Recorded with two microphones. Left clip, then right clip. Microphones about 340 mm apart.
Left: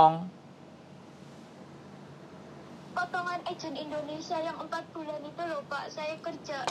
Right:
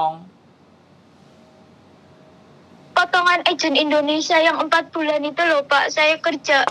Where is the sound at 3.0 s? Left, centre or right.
Right.